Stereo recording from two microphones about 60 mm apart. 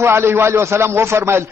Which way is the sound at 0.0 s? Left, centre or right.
Right.